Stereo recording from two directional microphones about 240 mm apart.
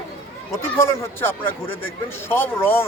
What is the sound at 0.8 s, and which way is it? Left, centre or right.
Speech, centre.